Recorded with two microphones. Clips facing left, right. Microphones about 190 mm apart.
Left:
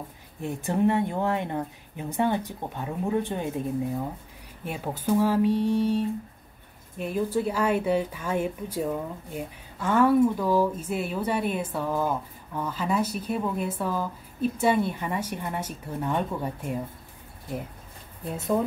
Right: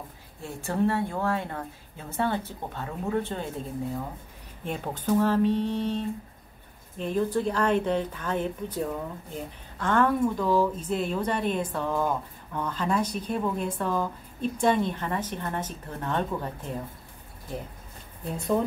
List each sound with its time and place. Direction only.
0.4 s speech: 20° left (ahead or behind)
4.6 s speech: 10° left (ahead or behind)
18.2 s speech: 5° left (ahead or behind)